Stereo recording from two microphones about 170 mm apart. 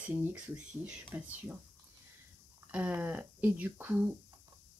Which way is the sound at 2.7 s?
10° right (ahead or behind).